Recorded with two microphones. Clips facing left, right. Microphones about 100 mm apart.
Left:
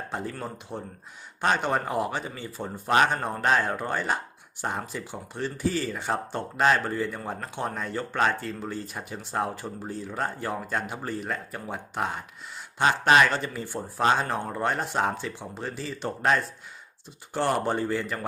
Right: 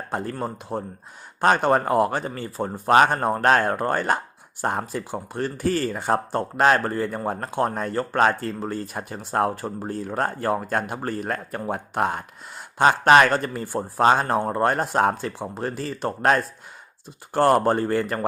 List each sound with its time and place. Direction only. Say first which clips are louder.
0.1 s speech: right 6 dB; 55° right (ahead or behind)
0.3 s speech: right 7 dB; 40° right (ahead or behind)